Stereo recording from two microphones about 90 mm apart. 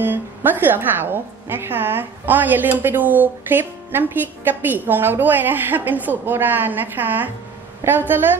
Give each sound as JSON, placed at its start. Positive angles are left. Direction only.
{"t": 0.0, "sound": "a woman's voice", "side_deg": -25}